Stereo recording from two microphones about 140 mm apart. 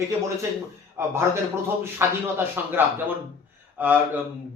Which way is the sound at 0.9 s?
20° right (ahead or behind).